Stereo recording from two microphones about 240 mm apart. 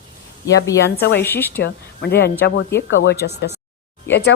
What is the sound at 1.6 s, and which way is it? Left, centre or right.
A woman's voice, left.